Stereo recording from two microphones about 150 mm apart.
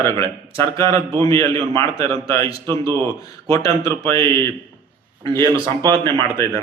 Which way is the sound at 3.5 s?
20° left (ahead or behind).